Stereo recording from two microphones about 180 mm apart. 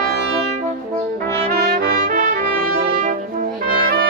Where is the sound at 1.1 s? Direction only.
55° right (ahead or behind).